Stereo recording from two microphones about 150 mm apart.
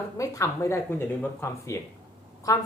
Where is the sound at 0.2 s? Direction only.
20° left (ahead or behind).